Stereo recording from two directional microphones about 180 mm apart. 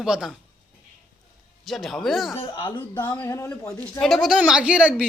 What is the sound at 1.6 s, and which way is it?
Speech, centre (ahead or behind).